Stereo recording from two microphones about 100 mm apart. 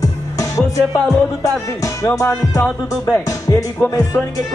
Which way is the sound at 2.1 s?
30° left (ahead or behind).